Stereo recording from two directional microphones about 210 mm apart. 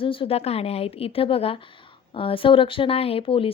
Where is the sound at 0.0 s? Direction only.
25° left (ahead or behind).